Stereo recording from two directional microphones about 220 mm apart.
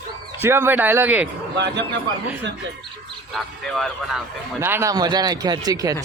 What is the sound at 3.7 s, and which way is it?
Speech, centre (ahead or behind).